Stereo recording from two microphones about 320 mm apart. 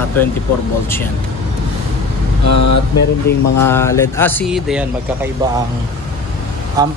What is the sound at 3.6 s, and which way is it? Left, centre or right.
Speech, centre.